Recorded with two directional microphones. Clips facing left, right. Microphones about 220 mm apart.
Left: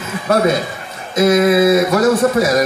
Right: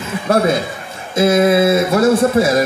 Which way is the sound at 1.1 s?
30° right (ahead or behind).